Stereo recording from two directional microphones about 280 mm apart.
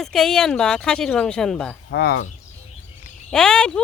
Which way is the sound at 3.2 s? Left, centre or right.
Centre.